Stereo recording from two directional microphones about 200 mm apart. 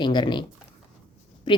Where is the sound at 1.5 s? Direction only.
25° left (ahead or behind).